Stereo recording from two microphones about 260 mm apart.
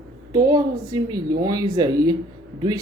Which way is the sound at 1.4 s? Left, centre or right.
Centre.